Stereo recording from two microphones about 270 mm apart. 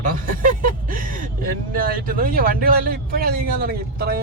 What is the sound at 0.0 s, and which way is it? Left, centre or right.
Music, right.